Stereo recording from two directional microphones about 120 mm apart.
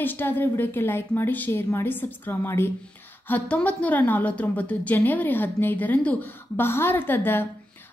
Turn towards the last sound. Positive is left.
turn(degrees=15)  # may be behind; listen again after turning